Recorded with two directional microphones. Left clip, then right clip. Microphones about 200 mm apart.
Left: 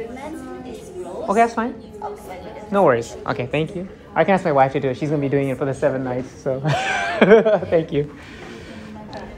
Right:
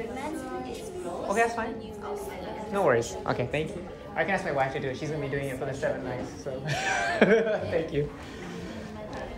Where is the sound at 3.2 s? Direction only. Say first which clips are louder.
Left 6 dB; 5° right (ahead or behind).